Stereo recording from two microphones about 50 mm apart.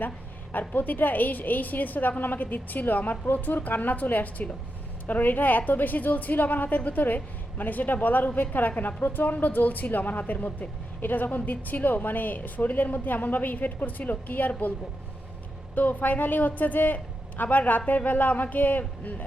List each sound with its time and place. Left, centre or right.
0.7 s a woman's voice: left
15.7 s a woman's voice: left